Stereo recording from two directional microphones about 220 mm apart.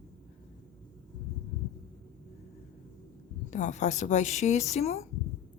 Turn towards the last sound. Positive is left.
turn(degrees=30)  # may be behind; listen again after turning